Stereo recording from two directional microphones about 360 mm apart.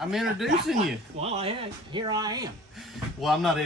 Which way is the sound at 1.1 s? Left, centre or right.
Centre.